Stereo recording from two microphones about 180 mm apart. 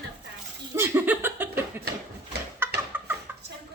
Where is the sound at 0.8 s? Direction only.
10° right (ahead or behind).